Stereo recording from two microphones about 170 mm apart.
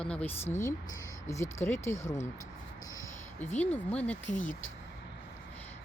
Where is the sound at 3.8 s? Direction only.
10° left (ahead or behind).